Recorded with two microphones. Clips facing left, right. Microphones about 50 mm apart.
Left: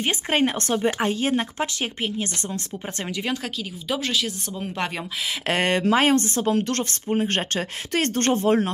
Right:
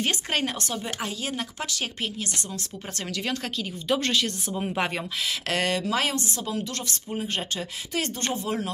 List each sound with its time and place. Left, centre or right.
0.0 s speech: left
0.6 s speech: left; by 3.3 s centre
3.5 s speech: centre
4.5 s speech: centre
5.5 s speech: left